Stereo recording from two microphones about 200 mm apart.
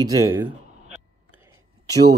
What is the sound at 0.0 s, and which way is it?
Speech, 15° right (ahead or behind).